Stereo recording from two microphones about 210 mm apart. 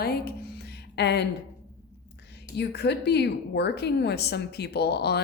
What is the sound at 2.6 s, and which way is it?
A woman's voice, 55° left (ahead or behind).